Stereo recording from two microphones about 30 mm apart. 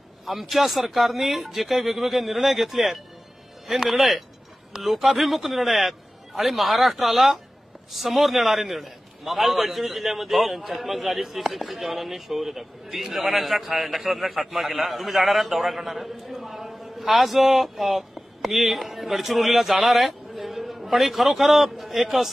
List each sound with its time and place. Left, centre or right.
0.2 s a man's voice: centre